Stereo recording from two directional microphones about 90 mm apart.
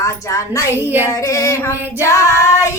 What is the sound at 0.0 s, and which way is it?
Female singing, 35° left (ahead or behind).